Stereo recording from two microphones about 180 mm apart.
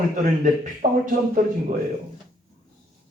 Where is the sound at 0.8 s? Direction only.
50° right (ahead or behind).